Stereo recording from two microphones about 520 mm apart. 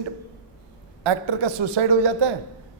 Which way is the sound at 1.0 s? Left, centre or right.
Right.